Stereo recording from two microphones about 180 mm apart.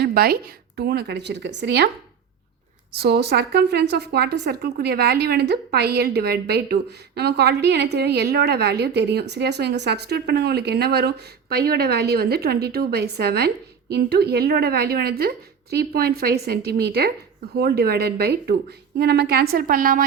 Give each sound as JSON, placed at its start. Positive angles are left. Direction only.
{"t": 0.0, "sound": "a woman's voice", "side_deg": -60}
{"t": 2.9, "sound": "a woman's voice", "side_deg": -60}